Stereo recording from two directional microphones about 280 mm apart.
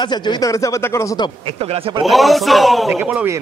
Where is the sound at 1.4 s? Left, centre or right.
Right.